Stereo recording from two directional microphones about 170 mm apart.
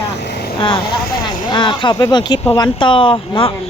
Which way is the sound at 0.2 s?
80° left.